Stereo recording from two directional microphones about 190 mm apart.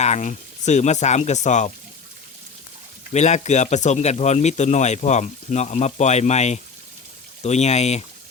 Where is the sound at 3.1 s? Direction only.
35° left (ahead or behind).